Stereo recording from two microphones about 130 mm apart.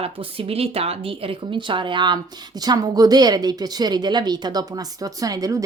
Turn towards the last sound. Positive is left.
turn(degrees=-30)  # may be behind; listen again after turning